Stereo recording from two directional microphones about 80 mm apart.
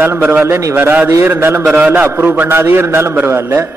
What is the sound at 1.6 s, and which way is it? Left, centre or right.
A man's voice, centre.